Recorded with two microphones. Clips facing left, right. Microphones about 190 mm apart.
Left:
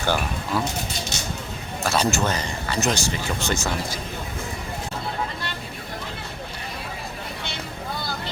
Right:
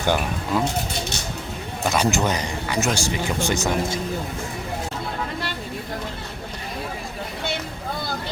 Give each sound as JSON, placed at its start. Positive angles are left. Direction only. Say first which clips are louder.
{"t": 0.0, "sound": "speech", "louder": "right 2 dB", "side_deg": -15}
{"t": 1.8, "sound": "speech", "louder": "right 1 dB", "side_deg": -15}